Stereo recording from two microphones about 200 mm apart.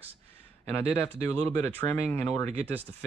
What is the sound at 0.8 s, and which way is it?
Speech, 30° right (ahead or behind).